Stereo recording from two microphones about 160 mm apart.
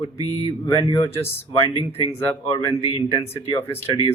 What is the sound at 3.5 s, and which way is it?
Speech, 20° left (ahead or behind).